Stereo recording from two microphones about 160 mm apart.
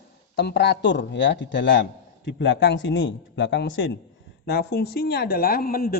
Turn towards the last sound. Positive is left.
turn(degrees=70)  # may be behind; listen again after turning